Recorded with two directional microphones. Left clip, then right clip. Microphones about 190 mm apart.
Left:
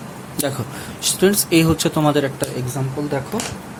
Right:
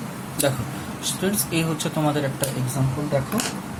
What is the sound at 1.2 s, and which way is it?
Speech, 55° left (ahead or behind).